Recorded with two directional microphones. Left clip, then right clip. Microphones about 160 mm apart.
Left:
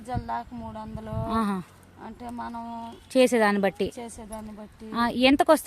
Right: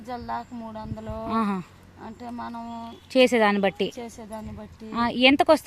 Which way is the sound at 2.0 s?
10° right (ahead or behind).